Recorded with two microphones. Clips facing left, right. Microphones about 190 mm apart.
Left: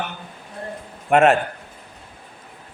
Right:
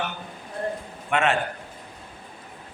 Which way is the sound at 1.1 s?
45° left (ahead or behind).